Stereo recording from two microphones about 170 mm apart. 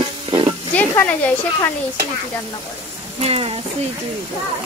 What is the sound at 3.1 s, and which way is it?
Speech, 35° right (ahead or behind).